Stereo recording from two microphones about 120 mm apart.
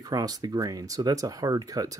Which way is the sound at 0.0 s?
30° right (ahead or behind).